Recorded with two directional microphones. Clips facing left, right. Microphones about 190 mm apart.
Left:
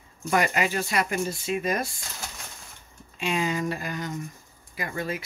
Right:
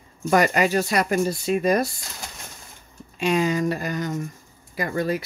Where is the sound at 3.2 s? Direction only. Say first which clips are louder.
Right 6 dB; 40° right (ahead or behind).